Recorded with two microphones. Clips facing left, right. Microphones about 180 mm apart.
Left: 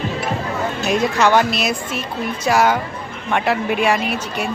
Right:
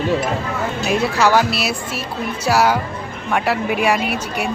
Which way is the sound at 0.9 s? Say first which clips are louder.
Even; 5° right (ahead or behind).